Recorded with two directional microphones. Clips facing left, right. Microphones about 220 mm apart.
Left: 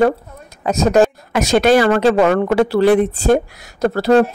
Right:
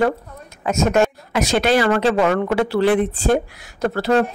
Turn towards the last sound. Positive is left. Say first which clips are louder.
# left 5 dB
turn(degrees=40)  # may be behind; listen again after turning